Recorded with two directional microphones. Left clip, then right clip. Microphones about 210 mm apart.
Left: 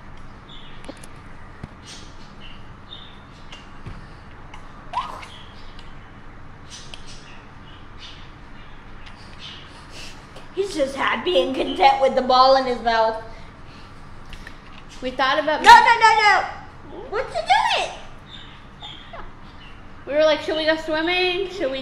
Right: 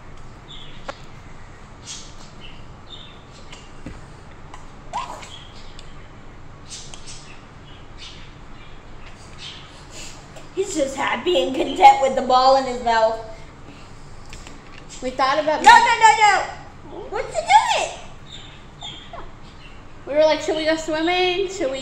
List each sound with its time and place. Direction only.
10.5 s a woman's voice: 15° left (ahead or behind)
15.1 s a woman's voice: 10° right (ahead or behind)
15.6 s a woman's voice: 15° left (ahead or behind)
17.1 s a sound: 15° left (ahead or behind)
20.1 s a woman's voice: 10° right (ahead or behind)